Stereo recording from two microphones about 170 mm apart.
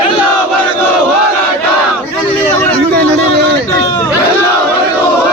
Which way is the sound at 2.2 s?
10° left (ahead or behind).